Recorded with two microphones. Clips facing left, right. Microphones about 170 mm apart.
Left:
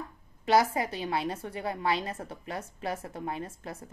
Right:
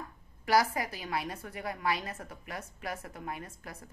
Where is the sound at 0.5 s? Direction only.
25° left (ahead or behind).